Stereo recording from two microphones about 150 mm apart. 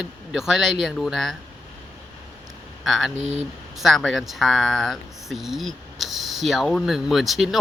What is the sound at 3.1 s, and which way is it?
Speech, 50° right (ahead or behind).